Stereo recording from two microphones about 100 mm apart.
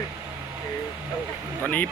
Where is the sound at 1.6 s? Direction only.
15° left (ahead or behind).